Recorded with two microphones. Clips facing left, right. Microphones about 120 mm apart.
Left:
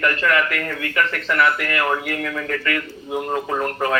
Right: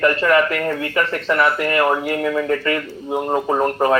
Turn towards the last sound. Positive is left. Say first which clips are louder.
# right 5 dB
turn(degrees=-30)  # may be behind; listen again after turning